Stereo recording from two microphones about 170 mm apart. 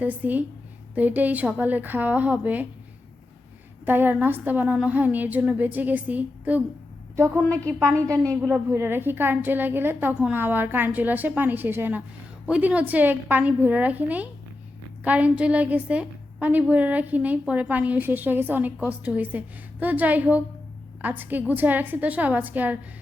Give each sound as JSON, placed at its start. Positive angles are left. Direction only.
{"t": 0.0, "sound": "a woman's voice", "side_deg": -10}
{"t": 3.8, "sound": "a woman's voice", "side_deg": -10}
{"t": 7.6, "sound": "a woman's voice", "side_deg": -15}